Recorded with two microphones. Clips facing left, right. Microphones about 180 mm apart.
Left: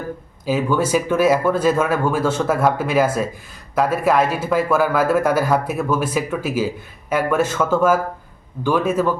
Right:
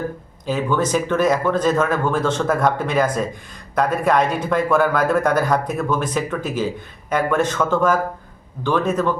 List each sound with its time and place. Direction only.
0.4 s speech: 10° left (ahead or behind)